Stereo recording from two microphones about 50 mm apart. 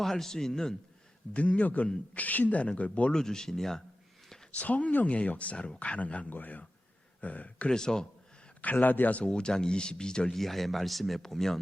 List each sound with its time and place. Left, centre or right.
0.0 s speech: centre
1.3 s speech: left
3.1 s speech: centre
4.5 s speech: left
7.7 s speech: centre
8.6 s speech: left
9.2 s speech: centre
10.4 s speech: centre